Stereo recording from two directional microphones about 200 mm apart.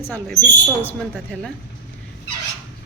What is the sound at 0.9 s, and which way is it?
Speech, 5° left (ahead or behind).